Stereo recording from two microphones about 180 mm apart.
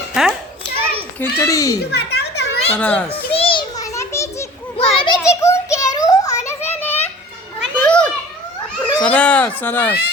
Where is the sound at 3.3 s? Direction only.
30° left (ahead or behind); by 6.9 s 15° left (ahead or behind).